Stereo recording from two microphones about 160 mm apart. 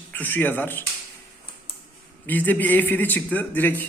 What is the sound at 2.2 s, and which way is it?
A man's voice, 10° left (ahead or behind).